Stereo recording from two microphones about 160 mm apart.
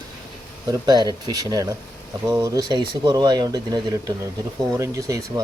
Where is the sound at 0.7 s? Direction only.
25° right (ahead or behind).